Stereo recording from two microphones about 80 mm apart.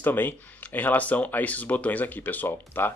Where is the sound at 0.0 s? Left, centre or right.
Left.